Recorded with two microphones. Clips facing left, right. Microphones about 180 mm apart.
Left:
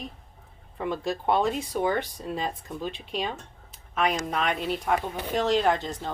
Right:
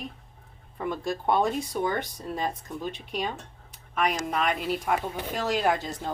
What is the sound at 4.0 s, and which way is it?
Speech, centre (ahead or behind).